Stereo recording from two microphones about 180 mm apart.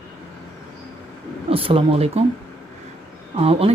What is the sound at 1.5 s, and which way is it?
Speech, 30° right (ahead or behind).